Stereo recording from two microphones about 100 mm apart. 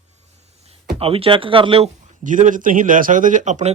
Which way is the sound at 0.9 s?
70° right (ahead or behind).